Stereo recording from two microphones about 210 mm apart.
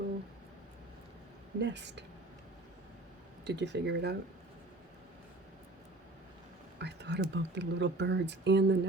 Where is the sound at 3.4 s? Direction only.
55° right (ahead or behind).